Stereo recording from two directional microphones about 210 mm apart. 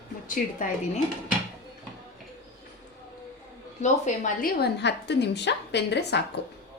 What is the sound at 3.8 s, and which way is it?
A woman's voice, 35° left (ahead or behind).